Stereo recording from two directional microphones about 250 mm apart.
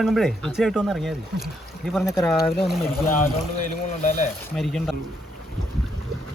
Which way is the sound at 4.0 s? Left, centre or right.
Left.